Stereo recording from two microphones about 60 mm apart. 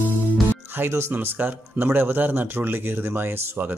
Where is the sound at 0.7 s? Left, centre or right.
Right.